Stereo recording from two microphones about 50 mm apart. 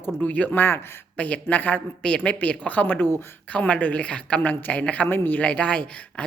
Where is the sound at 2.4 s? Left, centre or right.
Left.